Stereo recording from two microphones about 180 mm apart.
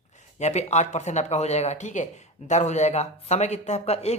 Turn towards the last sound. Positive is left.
turn(degrees=35)  # may be behind; listen again after turning